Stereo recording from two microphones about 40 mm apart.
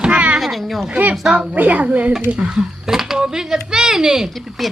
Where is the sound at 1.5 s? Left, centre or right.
Right.